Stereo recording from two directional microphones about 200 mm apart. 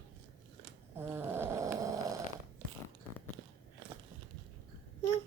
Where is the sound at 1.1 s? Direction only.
10° right (ahead or behind).